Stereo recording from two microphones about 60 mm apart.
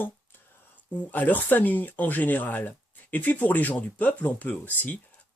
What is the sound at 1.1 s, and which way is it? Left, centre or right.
Speech, left.